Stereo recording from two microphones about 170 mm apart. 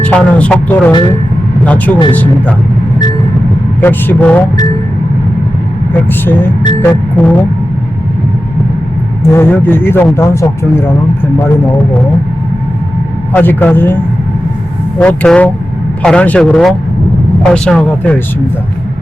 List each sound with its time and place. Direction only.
0.0 s speech: 5° left (ahead or behind)
3.8 s speech: 10° left (ahead or behind)
6.8 s speech: 10° left (ahead or behind)
9.3 s speech: 10° left (ahead or behind)
13.3 s speech: 10° left (ahead or behind)